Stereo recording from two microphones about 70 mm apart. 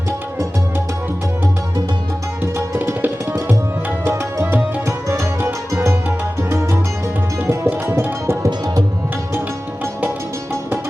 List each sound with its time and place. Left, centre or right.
2.7 s tabla: right
4.1 s music: right
7.4 s tabla: right
7.7 s music: right
8.4 s music: right